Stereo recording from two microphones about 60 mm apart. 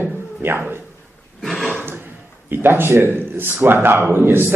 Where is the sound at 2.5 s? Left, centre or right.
Right.